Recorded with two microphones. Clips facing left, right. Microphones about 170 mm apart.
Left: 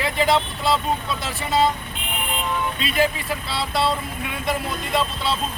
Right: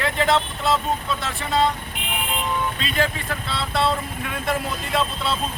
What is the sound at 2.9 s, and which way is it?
Speech, 10° left (ahead or behind).